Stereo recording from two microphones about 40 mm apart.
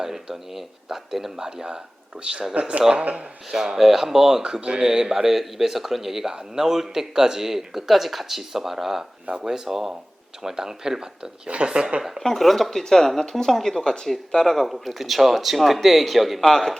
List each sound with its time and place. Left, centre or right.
0.0 s speech: centre
1.5 s speech: right
2.6 s speech: right
3.5 s speech: centre
11.4 s speech: right
12.2 s speech: centre
16.4 s speech: centre